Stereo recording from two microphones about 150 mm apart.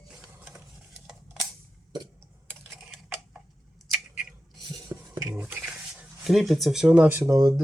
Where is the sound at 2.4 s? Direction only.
10° right (ahead or behind).